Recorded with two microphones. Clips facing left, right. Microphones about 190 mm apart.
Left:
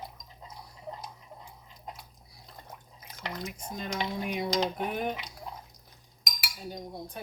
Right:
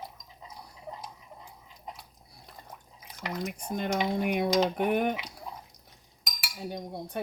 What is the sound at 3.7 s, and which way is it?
Speech, 55° right (ahead or behind).